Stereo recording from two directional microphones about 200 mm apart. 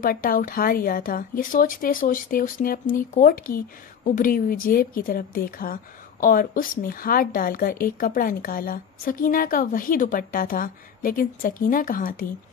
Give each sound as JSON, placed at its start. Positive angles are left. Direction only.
{"t": 0.0, "sound": "a woman's voice", "side_deg": 45}